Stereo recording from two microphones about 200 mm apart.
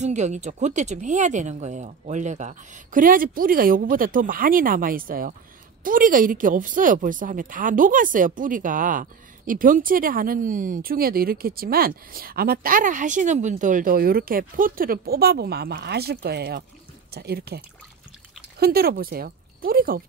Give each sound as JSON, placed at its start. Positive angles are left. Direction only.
{"t": 0.0, "sound": "speech", "side_deg": -35}